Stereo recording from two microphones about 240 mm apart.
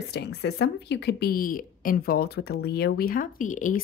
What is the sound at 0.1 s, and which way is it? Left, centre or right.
A woman's voice, left.